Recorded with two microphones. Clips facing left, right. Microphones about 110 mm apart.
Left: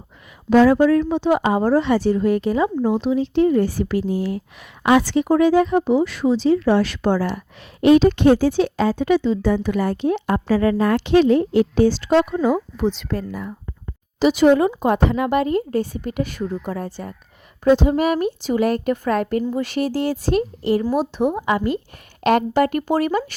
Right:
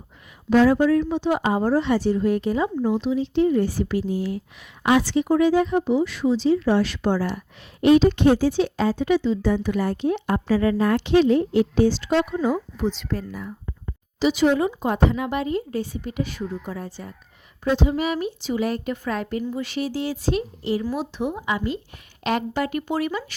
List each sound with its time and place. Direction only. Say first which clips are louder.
0.5 s speech: left 3 dB; 85° left
13.0 s speech: left 3 dB; 65° left (ahead or behind)
14.2 s a woman's voice: left 5 dB; 55° left (ahead or behind)